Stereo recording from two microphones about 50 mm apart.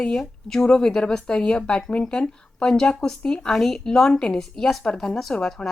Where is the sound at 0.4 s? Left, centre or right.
Centre.